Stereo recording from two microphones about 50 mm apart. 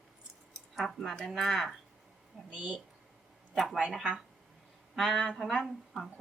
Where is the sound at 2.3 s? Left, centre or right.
Centre.